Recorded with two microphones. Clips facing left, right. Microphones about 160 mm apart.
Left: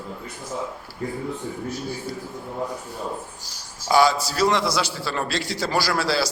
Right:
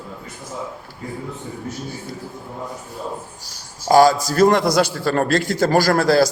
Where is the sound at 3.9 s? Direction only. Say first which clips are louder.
Right 6 dB; 45° right (ahead or behind).